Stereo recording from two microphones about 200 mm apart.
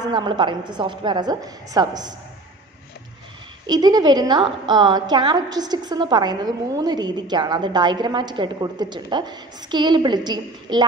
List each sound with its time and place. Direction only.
0.0 s a woman's voice: 20° right (ahead or behind)
3.6 s a woman's voice: 20° right (ahead or behind)